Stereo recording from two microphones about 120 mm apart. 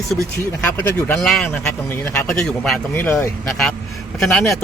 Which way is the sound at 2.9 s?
15° left (ahead or behind).